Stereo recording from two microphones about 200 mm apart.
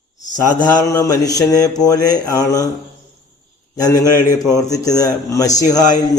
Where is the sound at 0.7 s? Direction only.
15° left (ahead or behind).